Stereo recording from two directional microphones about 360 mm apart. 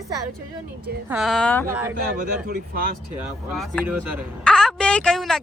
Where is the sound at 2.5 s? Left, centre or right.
Right.